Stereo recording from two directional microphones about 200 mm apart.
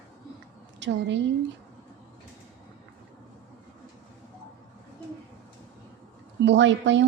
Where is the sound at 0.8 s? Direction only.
65° right (ahead or behind).